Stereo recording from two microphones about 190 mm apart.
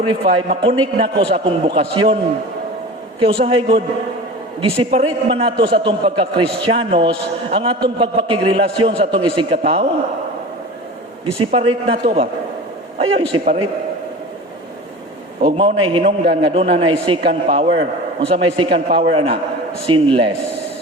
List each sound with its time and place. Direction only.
0.0 s a man's voice: 30° right (ahead or behind)
3.2 s a man's voice: 30° right (ahead or behind)
4.9 s a man's voice: 30° right (ahead or behind)
11.3 s a man's voice: 30° right (ahead or behind)
15.4 s a man's voice: 25° right (ahead or behind)